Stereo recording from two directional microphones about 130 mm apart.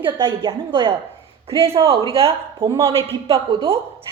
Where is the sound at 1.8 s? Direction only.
40° right (ahead or behind).